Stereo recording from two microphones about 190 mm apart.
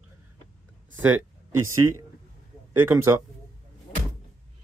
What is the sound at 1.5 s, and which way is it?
Speech, 90° right.